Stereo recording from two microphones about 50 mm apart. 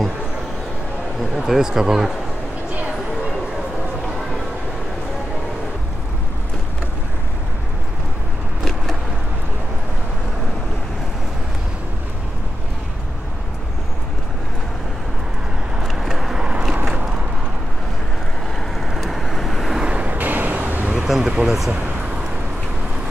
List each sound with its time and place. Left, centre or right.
1.3 s speech: centre
15.8 s vehicle: centre
16.8 s a sound: centre
18.8 s vehicle: centre
19.9 s vehicle: right
20.2 s vehicle: right
21.1 s a sound: centre